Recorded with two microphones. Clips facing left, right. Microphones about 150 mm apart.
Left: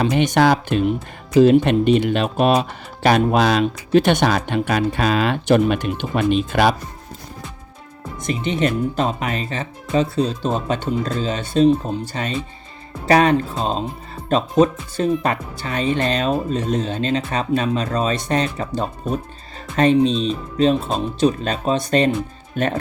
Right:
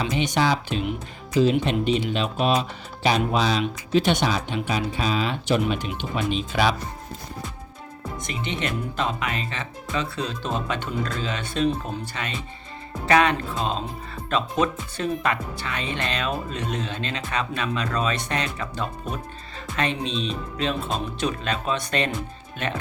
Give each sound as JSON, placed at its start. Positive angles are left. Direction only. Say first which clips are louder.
{"t": 0.0, "sound": "speech", "louder": "left 7 dB", "side_deg": 60}
{"t": 8.3, "sound": "speech", "louder": "left 9 dB", "side_deg": 40}